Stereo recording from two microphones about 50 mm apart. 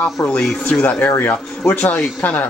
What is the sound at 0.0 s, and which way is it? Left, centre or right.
Speech, left.